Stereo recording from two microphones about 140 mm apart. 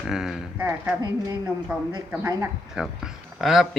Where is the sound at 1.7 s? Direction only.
10° right (ahead or behind).